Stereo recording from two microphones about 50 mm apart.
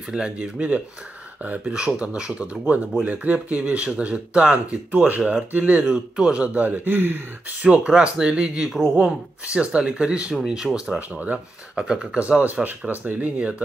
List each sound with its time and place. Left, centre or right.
0.1 s speech: right
5.9 s speech: centre; by 7.5 s right
7.6 s speech: right
11.0 s speech: right
11.8 s speech: centre
12.9 s speech: right